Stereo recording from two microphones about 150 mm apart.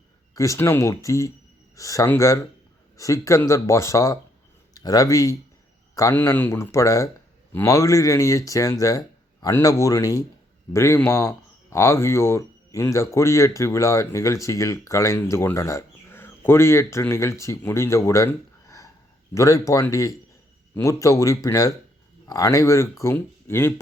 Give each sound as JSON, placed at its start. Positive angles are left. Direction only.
{"t": 0.3, "sound": "a man's voice", "side_deg": 20}
{"t": 6.1, "sound": "speech", "side_deg": 10}